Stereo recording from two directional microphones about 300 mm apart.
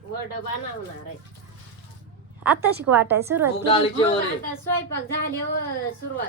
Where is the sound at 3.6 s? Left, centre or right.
Centre.